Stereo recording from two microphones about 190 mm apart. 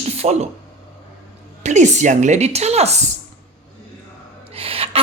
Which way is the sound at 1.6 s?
40° right (ahead or behind).